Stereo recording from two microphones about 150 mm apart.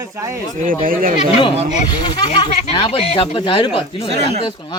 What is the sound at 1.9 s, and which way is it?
Speech, 30° left (ahead or behind).